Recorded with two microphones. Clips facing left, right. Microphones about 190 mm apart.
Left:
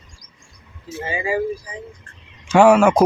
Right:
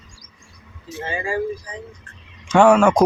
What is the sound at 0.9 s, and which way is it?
Speech, 10° left (ahead or behind).